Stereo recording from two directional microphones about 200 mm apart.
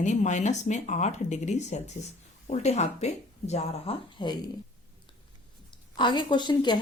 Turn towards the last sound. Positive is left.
turn(degrees=20)  # may be behind; listen again after turning